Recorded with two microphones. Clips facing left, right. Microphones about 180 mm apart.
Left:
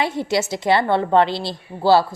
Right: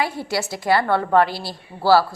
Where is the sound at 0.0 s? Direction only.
20° left (ahead or behind).